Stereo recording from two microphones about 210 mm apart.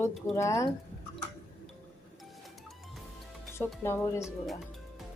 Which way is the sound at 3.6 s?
10° left (ahead or behind).